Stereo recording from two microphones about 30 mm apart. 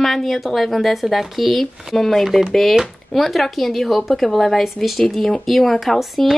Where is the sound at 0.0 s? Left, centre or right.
Centre.